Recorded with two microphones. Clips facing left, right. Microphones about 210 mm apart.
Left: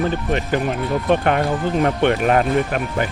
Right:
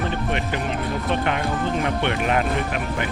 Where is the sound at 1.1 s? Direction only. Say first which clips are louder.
Left 7 dB; 50° left (ahead or behind).